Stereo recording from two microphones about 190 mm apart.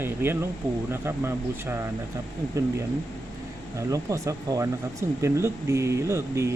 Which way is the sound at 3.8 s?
15° right (ahead or behind).